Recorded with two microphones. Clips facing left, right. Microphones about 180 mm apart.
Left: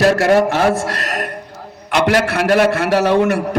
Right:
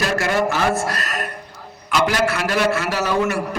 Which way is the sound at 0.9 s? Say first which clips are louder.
Left 4 dB; 75° left (ahead or behind).